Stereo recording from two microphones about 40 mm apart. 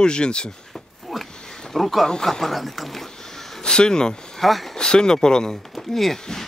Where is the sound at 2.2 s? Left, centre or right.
Centre.